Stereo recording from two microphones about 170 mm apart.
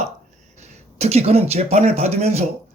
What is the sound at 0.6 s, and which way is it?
A man's voice, 40° right (ahead or behind).